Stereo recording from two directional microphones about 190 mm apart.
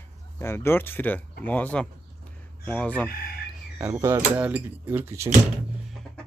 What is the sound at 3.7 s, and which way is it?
Speech, 15° right (ahead or behind).